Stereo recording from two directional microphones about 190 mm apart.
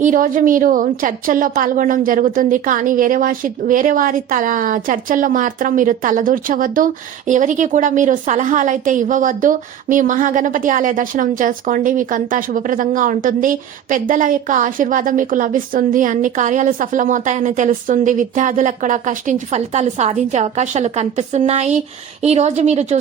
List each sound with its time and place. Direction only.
0.0 s a woman's voice: 45° right (ahead or behind)